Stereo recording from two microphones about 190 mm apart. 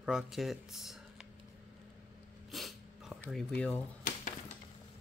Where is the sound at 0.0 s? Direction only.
Centre (ahead or behind).